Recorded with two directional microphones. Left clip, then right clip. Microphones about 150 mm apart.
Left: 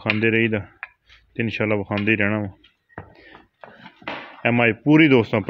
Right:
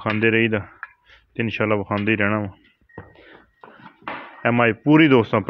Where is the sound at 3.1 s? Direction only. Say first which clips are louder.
Even; 15° left (ahead or behind).